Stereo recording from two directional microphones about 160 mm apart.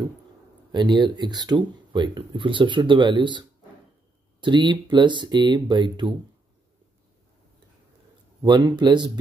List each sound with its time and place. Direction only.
0.7 s speech: 30° right (ahead or behind)
8.4 s speech: 25° right (ahead or behind)